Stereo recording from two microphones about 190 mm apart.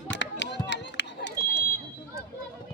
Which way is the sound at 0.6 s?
65° left (ahead or behind).